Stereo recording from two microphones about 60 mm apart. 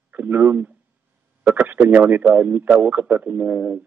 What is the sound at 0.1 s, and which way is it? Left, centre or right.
A man's voice, right.